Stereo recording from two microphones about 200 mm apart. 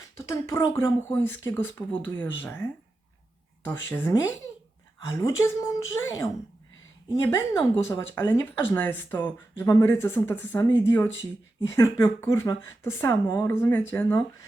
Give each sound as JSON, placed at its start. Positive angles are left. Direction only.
{"t": 0.2, "sound": "speech", "side_deg": 15}
{"t": 3.8, "sound": "speech", "side_deg": 10}
{"t": 7.3, "sound": "speech", "side_deg": 15}